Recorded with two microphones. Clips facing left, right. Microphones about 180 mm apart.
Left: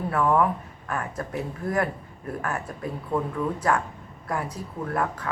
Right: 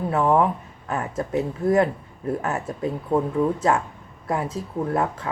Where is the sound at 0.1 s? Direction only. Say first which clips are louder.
Right 2 dB; 25° right (ahead or behind).